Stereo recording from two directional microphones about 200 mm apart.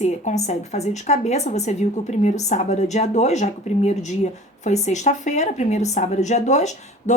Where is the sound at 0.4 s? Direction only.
35° left (ahead or behind).